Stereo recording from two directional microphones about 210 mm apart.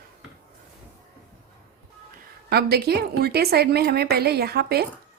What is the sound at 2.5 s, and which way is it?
Speech, 50° right (ahead or behind).